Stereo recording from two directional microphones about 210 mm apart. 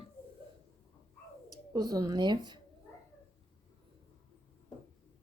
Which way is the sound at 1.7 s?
15° right (ahead or behind).